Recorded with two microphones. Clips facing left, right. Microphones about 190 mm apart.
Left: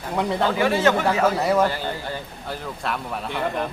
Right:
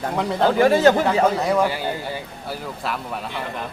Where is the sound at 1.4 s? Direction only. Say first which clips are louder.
Even; centre (ahead or behind).